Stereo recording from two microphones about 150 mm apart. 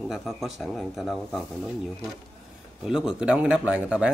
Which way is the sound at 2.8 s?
5° right (ahead or behind).